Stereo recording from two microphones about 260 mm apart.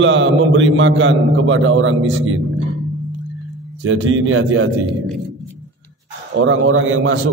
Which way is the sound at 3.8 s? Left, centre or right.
Right.